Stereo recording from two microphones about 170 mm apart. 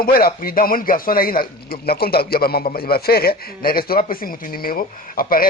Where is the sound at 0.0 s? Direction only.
60° left (ahead or behind).